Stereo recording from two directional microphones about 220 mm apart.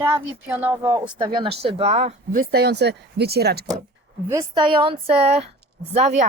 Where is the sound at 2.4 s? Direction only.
45° right (ahead or behind).